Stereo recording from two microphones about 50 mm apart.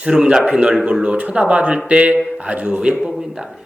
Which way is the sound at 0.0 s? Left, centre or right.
Centre.